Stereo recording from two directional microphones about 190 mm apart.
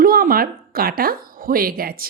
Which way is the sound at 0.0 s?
50° right (ahead or behind).